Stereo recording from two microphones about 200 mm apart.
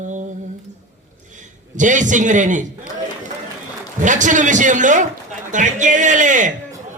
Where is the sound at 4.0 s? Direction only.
40° right (ahead or behind).